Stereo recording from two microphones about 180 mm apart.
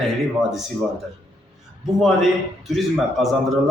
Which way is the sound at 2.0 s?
Centre (ahead or behind).